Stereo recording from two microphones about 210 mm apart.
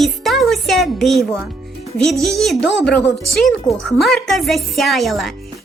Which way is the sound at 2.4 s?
Centre (ahead or behind).